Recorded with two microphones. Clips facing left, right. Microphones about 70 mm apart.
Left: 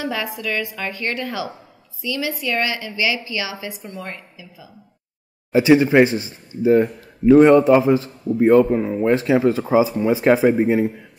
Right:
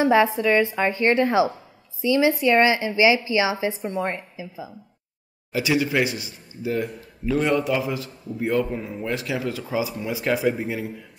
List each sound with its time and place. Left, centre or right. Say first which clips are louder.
0.0 s a woman's voice: right 8 dB; right
5.5 s a man's voice: left 9 dB; left